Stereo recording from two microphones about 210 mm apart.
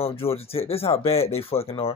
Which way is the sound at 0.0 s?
25° left (ahead or behind).